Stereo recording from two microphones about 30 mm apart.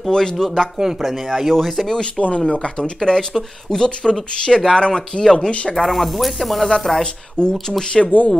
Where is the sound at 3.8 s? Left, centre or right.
Left.